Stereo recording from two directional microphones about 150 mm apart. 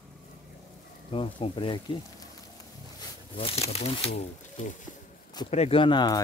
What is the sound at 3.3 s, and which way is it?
Speech, 40° left (ahead or behind).